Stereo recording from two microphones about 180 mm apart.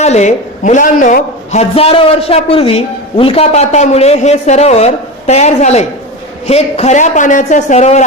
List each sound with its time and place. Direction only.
0.0 s a man's voice: 40° left (ahead or behind)